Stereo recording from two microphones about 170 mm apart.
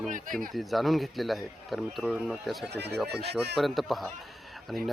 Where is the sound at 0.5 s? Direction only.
Centre (ahead or behind).